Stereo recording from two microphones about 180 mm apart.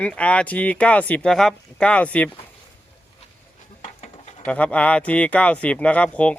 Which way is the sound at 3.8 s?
45° left (ahead or behind).